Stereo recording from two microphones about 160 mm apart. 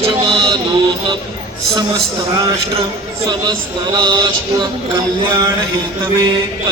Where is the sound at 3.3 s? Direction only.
25° right (ahead or behind).